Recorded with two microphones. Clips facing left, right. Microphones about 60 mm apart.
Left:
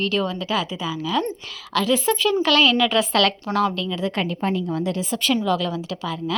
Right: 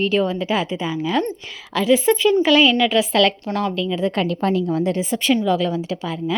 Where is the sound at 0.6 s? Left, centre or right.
Right.